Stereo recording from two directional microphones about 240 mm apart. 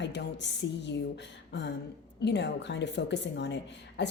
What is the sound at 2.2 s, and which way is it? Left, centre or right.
Speech, left.